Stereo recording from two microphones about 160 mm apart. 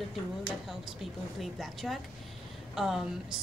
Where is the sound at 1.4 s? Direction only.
Centre (ahead or behind).